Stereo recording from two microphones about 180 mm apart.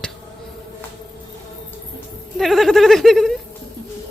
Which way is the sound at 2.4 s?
Centre (ahead or behind).